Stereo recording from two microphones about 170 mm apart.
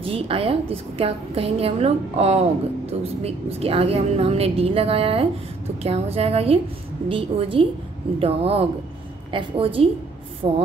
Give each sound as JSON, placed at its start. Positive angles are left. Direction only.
{"t": 0.0, "sound": "a woman's voice", "side_deg": -35}